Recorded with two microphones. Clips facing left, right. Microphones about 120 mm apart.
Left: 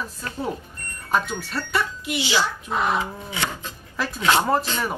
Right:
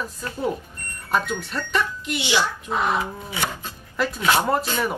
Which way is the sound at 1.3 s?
10° left (ahead or behind).